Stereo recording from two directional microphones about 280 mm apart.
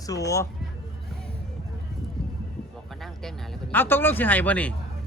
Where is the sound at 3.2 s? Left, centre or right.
Centre.